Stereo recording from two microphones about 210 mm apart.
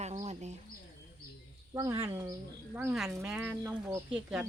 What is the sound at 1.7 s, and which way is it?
Speech, 15° right (ahead or behind).